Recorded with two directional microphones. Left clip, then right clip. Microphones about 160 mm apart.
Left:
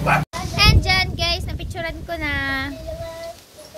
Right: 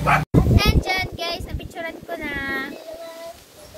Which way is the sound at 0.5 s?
5° left (ahead or behind).